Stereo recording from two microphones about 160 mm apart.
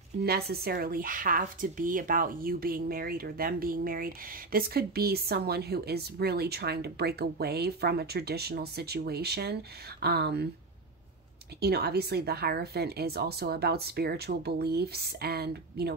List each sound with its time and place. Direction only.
0.5 s speech: 75° right (ahead or behind)
11.6 s a woman's voice: 80° right